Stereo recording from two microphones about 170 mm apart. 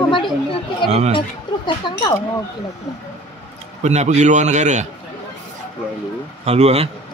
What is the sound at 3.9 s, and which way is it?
A man's voice, 40° right (ahead or behind).